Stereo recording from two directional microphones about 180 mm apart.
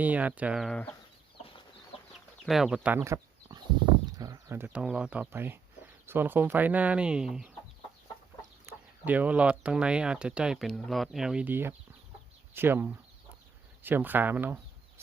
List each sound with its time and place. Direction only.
0.0 s speech: 10° right (ahead or behind)
2.5 s speech: centre (ahead or behind)
8.6 s speech: 10° right (ahead or behind)